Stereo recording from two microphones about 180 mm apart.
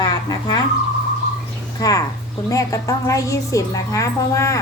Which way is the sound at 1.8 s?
20° left (ahead or behind).